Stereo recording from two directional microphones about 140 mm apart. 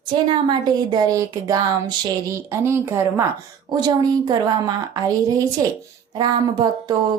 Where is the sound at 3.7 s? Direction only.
30° right (ahead or behind).